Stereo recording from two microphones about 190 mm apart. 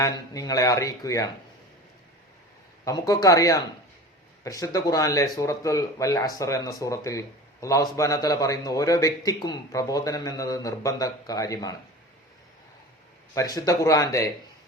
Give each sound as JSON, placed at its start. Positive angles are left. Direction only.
{"t": 0.0, "sound": "speech", "side_deg": 15}
{"t": 2.8, "sound": "speech", "side_deg": 15}
{"t": 13.3, "sound": "speech", "side_deg": 20}